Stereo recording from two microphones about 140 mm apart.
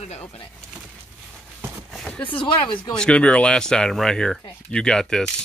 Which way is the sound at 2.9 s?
10° left (ahead or behind).